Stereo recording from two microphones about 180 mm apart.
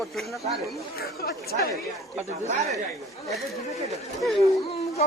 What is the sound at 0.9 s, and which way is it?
Speech, 60° left (ahead or behind).